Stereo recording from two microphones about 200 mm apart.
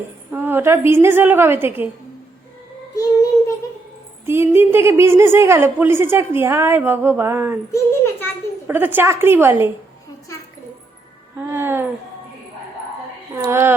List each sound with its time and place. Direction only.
0.3 s a woman's voice: 10° right (ahead or behind)
2.9 s child singing: 15° left (ahead or behind)
4.3 s a woman's voice: 10° right (ahead or behind)
7.7 s a child's voice: 15° left (ahead or behind)
8.6 s a woman's voice: 10° right (ahead or behind)
11.4 s a woman's voice: 10° right (ahead or behind)
13.4 s a woman's voice: 10° right (ahead or behind)